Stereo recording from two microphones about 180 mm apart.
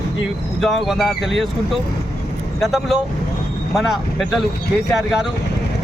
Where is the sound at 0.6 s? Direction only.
Centre (ahead or behind).